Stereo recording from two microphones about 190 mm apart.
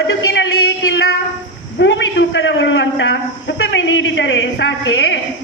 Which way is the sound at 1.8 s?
70° left (ahead or behind).